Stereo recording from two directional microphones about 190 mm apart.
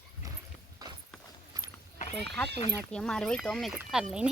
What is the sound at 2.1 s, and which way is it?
Speech, 5° left (ahead or behind).